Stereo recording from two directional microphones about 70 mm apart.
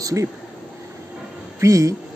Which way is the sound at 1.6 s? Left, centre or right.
Right.